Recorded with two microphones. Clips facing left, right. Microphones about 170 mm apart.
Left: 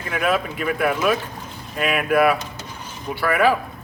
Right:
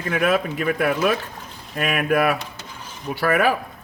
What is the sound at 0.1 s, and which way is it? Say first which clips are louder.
Speech: right 1 dB; 45° right (ahead or behind).